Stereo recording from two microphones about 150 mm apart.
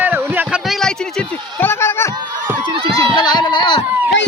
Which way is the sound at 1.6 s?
15° left (ahead or behind).